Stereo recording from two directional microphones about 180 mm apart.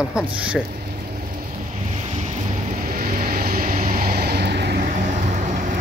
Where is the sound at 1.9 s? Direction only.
40° right (ahead or behind).